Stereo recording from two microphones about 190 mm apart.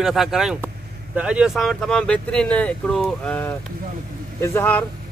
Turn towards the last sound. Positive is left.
turn(degrees=10)  # may be behind; listen again after turning